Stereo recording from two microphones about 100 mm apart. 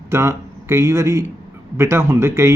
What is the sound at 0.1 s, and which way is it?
A man's voice, 25° right (ahead or behind).